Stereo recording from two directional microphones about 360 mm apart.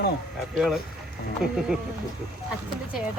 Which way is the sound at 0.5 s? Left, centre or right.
Centre.